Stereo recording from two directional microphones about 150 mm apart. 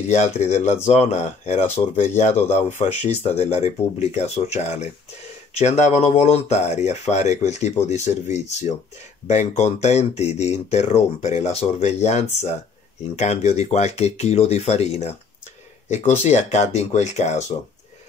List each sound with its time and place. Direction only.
0.1 s speech: 50° left (ahead or behind)